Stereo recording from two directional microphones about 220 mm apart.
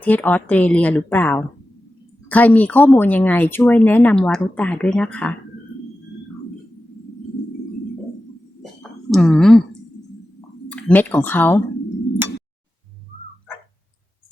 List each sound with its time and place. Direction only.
0.0 s speech: 5° left (ahead or behind)
8.8 s a sound: 5° left (ahead or behind)
10.7 s speech: 5° left (ahead or behind)